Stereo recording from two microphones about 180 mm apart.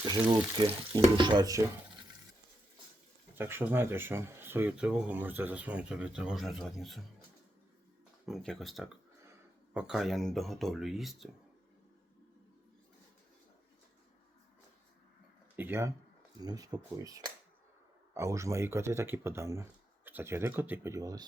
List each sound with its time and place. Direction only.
0.0 s speech: 25° right (ahead or behind)
3.3 s speech: 10° right (ahead or behind)
8.3 s speech: centre (ahead or behind)
15.5 s speech: 10° right (ahead or behind)